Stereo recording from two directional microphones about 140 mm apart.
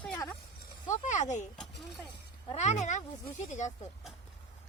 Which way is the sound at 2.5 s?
55° left (ahead or behind).